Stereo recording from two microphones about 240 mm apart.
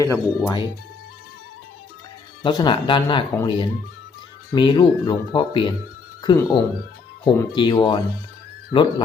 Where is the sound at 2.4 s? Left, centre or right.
Centre.